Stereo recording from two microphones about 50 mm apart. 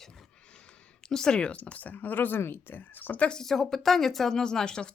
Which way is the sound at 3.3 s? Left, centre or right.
Centre.